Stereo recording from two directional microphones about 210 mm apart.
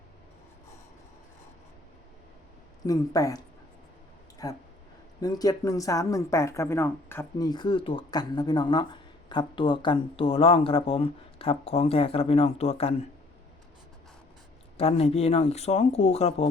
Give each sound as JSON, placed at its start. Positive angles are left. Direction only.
{"t": 2.8, "sound": "speech", "side_deg": 15}
{"t": 14.8, "sound": "speech", "side_deg": 30}